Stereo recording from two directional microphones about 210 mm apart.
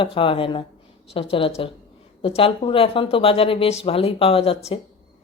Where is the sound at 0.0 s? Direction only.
25° left (ahead or behind).